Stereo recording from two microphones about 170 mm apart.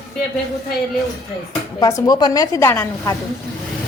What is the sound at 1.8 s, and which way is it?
A woman's voice, 20° left (ahead or behind).